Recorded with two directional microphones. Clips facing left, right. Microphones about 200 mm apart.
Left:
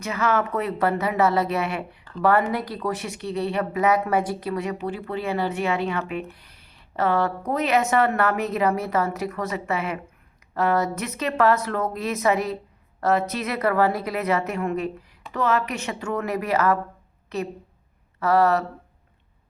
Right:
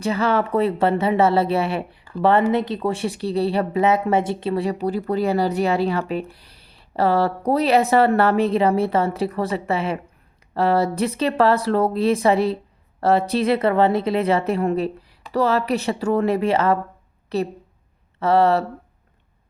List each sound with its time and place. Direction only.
0.0 s a woman's voice: 30° right (ahead or behind)